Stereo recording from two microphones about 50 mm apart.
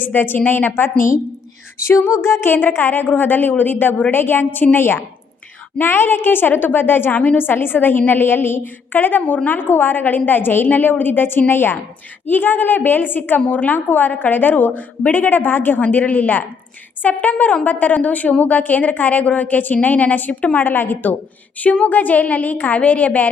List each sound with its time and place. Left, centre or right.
0.0 s a woman's voice: left
1.8 s music: left
2.5 s a woman's voice: left
9.2 s a woman's voice: left
9.5 s a woman's voice: left
21.6 s a woman's voice: left